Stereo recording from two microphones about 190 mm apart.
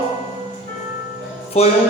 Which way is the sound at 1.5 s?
35° left (ahead or behind).